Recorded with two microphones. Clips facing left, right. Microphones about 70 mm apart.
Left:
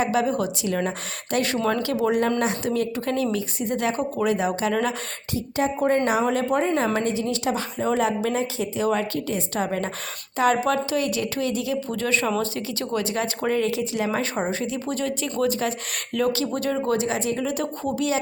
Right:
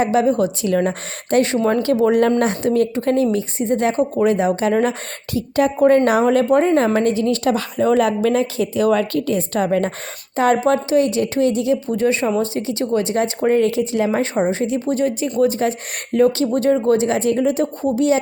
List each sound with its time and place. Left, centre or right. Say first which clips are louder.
0.0 s speech: right 6 dB; right
5.3 s a woman's voice: right 7 dB; right
10.6 s speech: right 7 dB; right
17.5 s speech: right 7 dB; right